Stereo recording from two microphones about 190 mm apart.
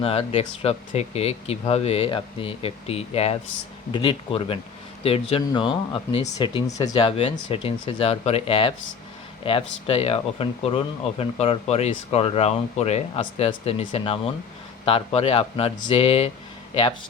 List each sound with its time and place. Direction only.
0.0 s speech: 30° left (ahead or behind)